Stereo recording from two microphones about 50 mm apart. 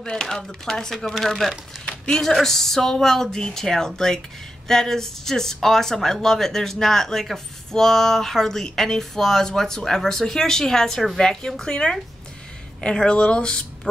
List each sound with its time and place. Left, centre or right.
0.0 s speech: centre
1.9 s a sound: centre
2.2 s speech: centre